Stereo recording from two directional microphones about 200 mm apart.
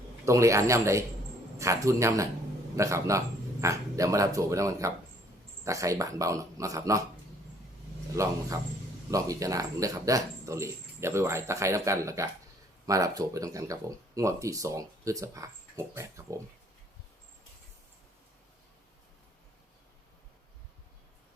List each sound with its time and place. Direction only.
0.3 s speech: 15° right (ahead or behind)
8.1 s speech: 15° right (ahead or behind)